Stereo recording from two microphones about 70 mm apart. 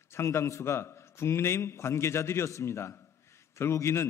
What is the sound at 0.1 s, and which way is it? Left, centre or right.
A man's voice, left.